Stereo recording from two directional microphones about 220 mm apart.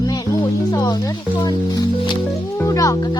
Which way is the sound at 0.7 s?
15° left (ahead or behind).